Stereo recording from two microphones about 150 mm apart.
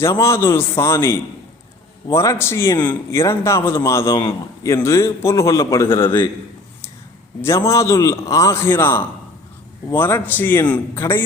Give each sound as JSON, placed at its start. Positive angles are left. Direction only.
{"t": 0.0, "sound": "a man's voice", "side_deg": 20}
{"t": 5.9, "sound": "a man's voice", "side_deg": 30}
{"t": 7.4, "sound": "a man's voice", "side_deg": 20}